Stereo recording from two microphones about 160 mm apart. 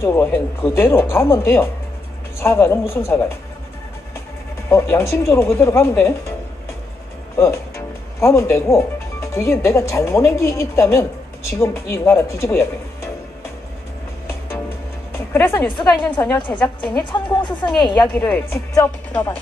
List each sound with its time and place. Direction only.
0.0 s speech: 15° left (ahead or behind)
4.6 s speech: 15° left (ahead or behind)
7.3 s speech: 15° left (ahead or behind)
15.1 s speech: 15° left (ahead or behind)
16.3 s a woman's voice: 30° left (ahead or behind)
18.1 s speech: 10° left (ahead or behind)